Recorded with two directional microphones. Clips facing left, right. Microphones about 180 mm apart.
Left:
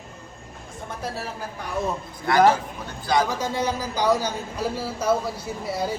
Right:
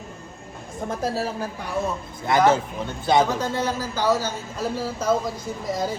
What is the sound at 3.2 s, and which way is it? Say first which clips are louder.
A man's voice: right 1 dB; 15° left (ahead or behind).